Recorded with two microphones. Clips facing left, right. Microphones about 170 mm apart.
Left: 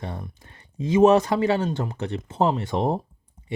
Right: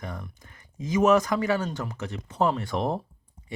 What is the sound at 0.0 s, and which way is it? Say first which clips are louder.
Speech: left 3 dB; 30° left (ahead or behind).